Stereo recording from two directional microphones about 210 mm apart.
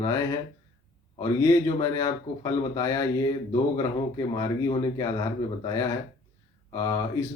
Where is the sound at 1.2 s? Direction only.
15° left (ahead or behind).